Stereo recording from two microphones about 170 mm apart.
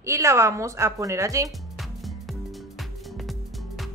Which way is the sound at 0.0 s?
15° right (ahead or behind).